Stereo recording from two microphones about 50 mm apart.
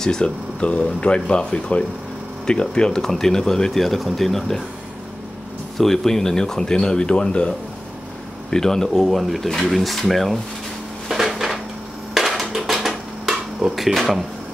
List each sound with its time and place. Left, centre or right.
0.0 s speech: centre
5.8 s speech: centre
11.1 s dishes: centre
13.7 s speech: centre